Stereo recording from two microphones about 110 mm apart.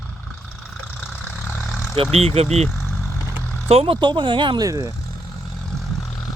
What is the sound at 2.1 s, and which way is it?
Speech, 70° right (ahead or behind).